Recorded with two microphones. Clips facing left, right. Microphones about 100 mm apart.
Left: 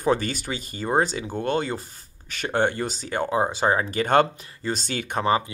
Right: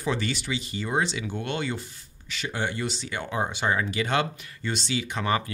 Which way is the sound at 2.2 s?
50° left (ahead or behind).